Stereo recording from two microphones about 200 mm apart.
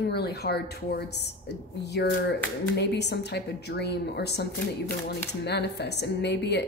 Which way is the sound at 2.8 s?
55° left (ahead or behind).